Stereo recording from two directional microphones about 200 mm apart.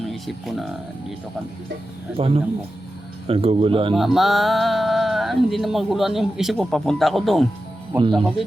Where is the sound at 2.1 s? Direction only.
30° right (ahead or behind).